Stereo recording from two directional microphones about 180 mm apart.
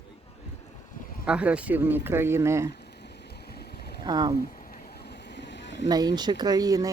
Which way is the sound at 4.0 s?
25° right (ahead or behind).